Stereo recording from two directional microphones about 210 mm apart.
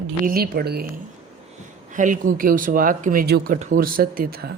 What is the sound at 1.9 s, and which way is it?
Speech, 35° right (ahead or behind).